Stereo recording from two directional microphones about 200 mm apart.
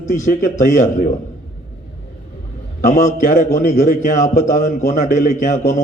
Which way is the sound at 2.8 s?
40° left (ahead or behind).